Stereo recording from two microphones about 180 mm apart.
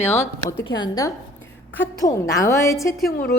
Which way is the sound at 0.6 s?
25° left (ahead or behind).